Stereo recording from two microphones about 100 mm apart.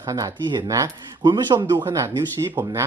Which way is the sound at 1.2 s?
45° right (ahead or behind).